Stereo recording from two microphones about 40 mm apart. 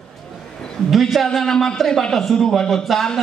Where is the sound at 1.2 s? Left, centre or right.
Centre.